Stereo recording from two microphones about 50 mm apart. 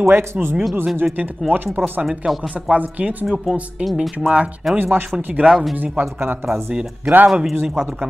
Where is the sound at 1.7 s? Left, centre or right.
Right.